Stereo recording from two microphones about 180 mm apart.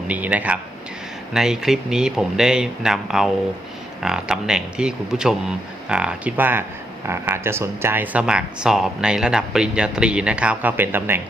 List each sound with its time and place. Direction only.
0.1 s speech: 10° right (ahead or behind)